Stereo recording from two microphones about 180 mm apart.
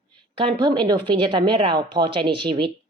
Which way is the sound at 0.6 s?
25° right (ahead or behind).